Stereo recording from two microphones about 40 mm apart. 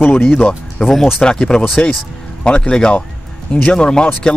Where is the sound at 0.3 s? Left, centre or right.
Left.